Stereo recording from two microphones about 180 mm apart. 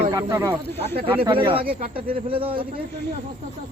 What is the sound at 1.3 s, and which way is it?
Speech, 30° right (ahead or behind).